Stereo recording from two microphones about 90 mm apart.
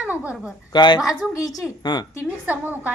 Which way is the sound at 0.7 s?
55° left (ahead or behind).